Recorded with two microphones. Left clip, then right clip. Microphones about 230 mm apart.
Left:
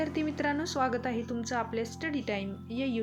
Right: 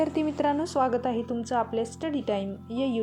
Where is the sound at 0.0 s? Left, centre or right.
Centre.